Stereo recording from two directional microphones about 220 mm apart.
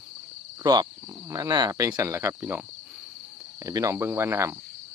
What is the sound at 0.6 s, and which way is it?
Speech, 20° right (ahead or behind).